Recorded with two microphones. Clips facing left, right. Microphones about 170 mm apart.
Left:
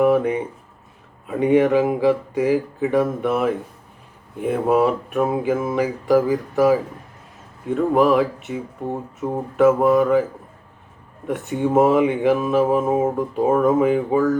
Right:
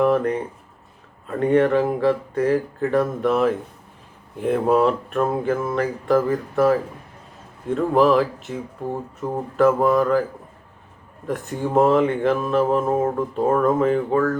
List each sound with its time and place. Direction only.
0.0 s speech: 5° left (ahead or behind)
11.3 s speech: centre (ahead or behind)